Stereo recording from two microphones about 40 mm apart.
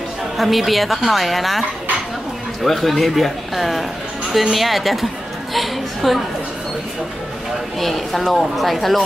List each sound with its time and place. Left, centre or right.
0.4 s a woman's voice: centre
2.6 s a woman's voice: centre
5.5 s a sound: centre
7.8 s a woman's voice: centre